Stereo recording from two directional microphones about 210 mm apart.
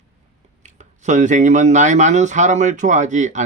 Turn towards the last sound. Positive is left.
turn(degrees=-35)  # may be behind; listen again after turning